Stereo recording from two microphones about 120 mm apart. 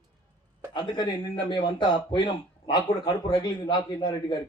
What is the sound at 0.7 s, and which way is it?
Speech, 40° left (ahead or behind).